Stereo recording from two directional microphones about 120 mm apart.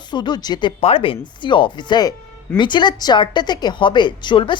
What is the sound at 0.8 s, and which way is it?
Speech, 50° left (ahead or behind).